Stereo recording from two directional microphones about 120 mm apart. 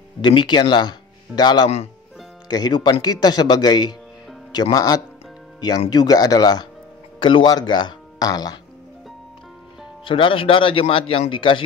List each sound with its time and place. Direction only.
0.2 s a man's voice: 40° left (ahead or behind)
10.0 s speech: 45° left (ahead or behind)